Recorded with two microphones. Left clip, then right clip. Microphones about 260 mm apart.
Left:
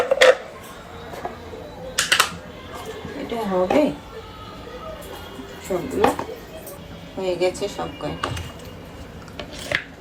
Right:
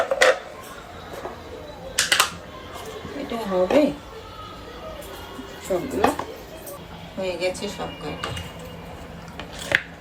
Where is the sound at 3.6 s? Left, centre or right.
Centre.